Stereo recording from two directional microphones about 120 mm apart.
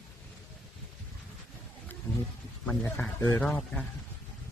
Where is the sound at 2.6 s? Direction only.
15° left (ahead or behind).